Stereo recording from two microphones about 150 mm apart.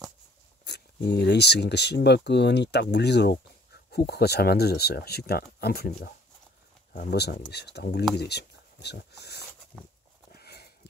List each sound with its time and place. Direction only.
0.7 s speech: 90° left
9.7 s livestock: 5° left (ahead or behind)
10.3 s sniff: 90° left